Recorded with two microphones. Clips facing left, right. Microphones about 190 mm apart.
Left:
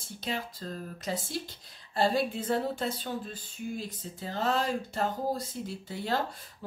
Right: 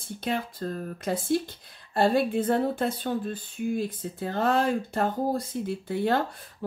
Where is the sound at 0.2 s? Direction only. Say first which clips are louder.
Right 6 dB; 55° right (ahead or behind).